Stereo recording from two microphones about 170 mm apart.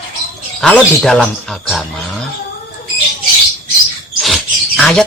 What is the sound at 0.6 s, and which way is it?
Speech, 5° left (ahead or behind).